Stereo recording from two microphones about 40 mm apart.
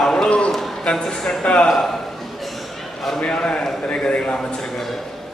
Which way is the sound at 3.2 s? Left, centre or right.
Left.